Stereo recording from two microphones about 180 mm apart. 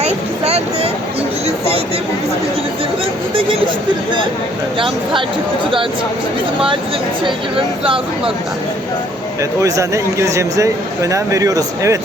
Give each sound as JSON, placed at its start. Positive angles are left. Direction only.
{"t": 0.0, "sound": "a sound", "side_deg": -35}
{"t": 7.3, "sound": "speech", "side_deg": -30}
{"t": 9.4, "sound": "speech", "side_deg": -20}